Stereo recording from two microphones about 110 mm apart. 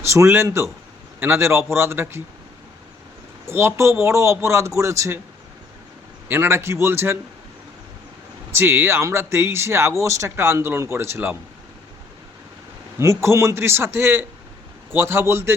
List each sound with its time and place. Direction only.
0.0 s speech: 25° right (ahead or behind)
3.4 s speech: 25° right (ahead or behind)
6.2 s speech: 20° right (ahead or behind)
8.5 s speech: 20° right (ahead or behind)
13.0 s speech: 25° right (ahead or behind)